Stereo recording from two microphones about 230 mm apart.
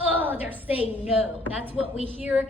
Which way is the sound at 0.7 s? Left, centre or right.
Left.